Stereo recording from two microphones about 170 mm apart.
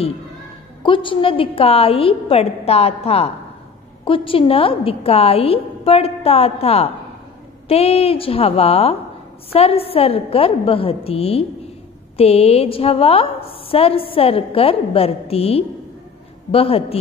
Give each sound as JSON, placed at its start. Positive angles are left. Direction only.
{"t": 0.8, "sound": "a woman's voice", "side_deg": 30}